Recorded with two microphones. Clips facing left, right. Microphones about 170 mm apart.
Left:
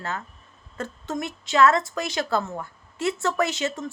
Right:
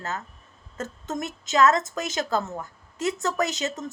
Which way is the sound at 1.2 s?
40° right (ahead or behind).